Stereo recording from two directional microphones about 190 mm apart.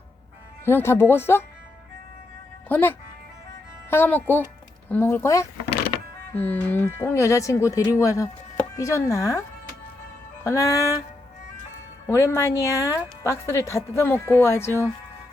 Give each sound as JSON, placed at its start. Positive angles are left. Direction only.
{"t": 0.6, "sound": "a woman's voice", "side_deg": 10}
{"t": 2.6, "sound": "a woman's voice", "side_deg": 10}
{"t": 10.4, "sound": "a woman's voice", "side_deg": 15}
{"t": 12.0, "sound": "a woman's voice", "side_deg": 15}